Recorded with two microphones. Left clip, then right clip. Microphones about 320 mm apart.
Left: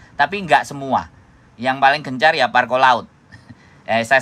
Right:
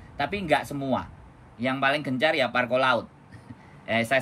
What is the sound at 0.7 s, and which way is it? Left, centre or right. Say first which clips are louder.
Speech: left 4 dB; left.